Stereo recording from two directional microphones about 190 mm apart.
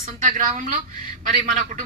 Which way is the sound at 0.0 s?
45° right (ahead or behind).